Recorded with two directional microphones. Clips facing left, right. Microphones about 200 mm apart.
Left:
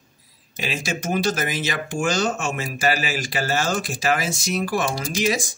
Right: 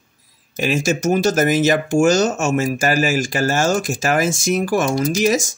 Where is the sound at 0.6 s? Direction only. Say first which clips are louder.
Right 9 dB; 45° right (ahead or behind).